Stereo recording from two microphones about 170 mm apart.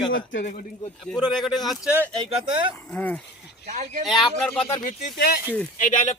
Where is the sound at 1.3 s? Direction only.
Centre (ahead or behind).